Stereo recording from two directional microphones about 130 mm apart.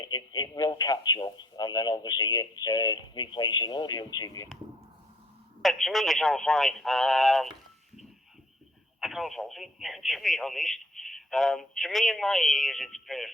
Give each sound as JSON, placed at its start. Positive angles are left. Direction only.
{"t": 0.0, "sound": "speech", "side_deg": 30}
{"t": 5.6, "sound": "speech", "side_deg": 0}
{"t": 9.0, "sound": "speech", "side_deg": 0}